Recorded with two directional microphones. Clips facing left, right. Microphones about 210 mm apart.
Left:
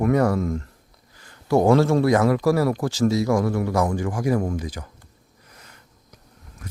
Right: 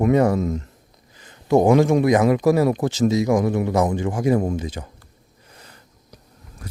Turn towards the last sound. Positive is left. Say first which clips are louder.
# right 2 dB
turn(degrees=-35)  # may be behind; listen again after turning